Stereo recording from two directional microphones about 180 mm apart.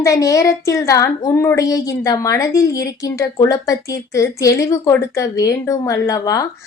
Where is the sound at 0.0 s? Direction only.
20° left (ahead or behind).